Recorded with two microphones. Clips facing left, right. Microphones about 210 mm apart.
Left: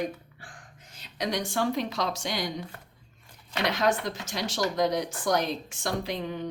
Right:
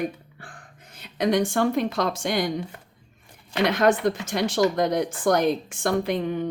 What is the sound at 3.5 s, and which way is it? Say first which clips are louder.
Speech: right 6 dB; 55° right (ahead or behind).